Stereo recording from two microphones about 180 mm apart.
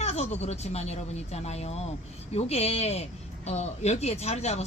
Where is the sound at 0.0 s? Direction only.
35° left (ahead or behind).